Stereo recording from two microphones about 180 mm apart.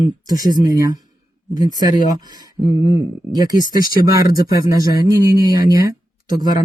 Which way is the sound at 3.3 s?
20° right (ahead or behind).